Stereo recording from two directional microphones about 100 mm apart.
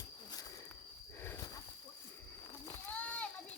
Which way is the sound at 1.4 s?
35° left (ahead or behind).